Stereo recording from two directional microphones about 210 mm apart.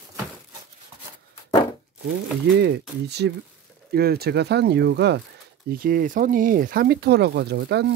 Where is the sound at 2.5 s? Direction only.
50° right (ahead or behind).